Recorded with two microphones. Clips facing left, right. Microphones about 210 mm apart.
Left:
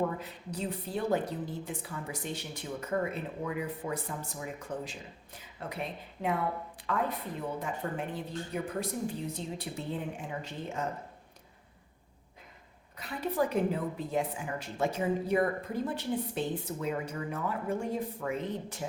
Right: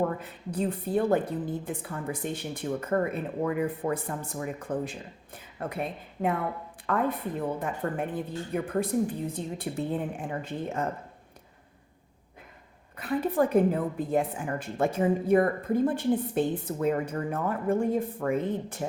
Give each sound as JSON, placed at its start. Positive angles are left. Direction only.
{"t": 0.0, "sound": "a woman's voice", "side_deg": -55}
{"t": 13.0, "sound": "a woman's voice", "side_deg": -55}